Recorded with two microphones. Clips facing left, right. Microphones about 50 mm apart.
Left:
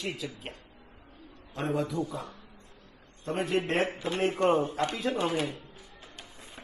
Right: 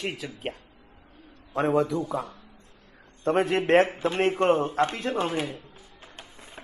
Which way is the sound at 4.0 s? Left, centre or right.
Right.